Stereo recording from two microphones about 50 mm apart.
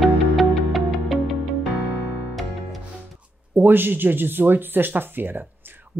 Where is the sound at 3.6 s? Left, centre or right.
Right.